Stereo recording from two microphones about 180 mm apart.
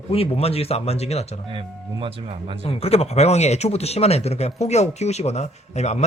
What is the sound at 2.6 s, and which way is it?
Speech, 35° left (ahead or behind).